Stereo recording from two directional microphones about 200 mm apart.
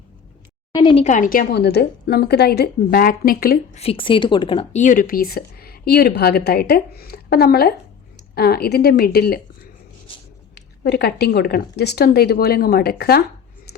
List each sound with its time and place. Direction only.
0.7 s a sound: 25° left (ahead or behind)
1.0 s speech: 40° left (ahead or behind)
3.8 s a woman's voice: 25° left (ahead or behind); by 9.4 s 50° left (ahead or behind)
10.5 s speech: 55° left (ahead or behind)